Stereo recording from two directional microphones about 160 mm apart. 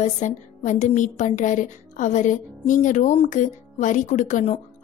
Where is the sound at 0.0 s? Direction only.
50° left (ahead or behind).